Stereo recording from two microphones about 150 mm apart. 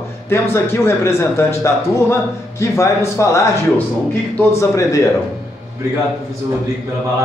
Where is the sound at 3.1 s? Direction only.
20° left (ahead or behind).